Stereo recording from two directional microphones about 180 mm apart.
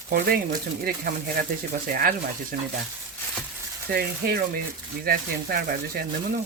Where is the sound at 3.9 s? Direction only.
55° right (ahead or behind).